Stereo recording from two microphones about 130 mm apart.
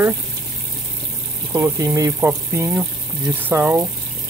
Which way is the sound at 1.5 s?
20° right (ahead or behind).